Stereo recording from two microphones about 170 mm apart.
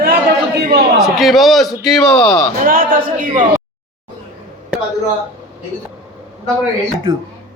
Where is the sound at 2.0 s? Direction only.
15° left (ahead or behind).